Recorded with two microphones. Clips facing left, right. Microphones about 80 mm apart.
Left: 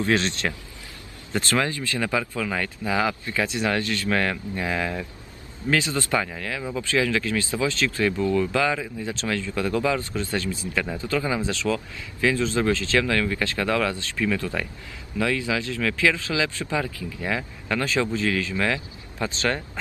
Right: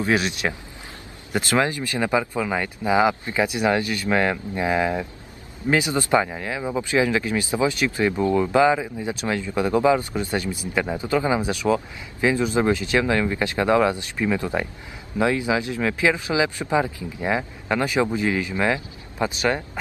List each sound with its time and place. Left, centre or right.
0.0 s speech: centre